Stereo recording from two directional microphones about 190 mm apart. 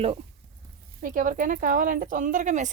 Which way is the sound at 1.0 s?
45° right (ahead or behind).